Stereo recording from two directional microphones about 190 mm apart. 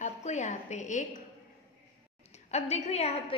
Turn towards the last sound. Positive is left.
turn(degrees=35)  # may be behind; listen again after turning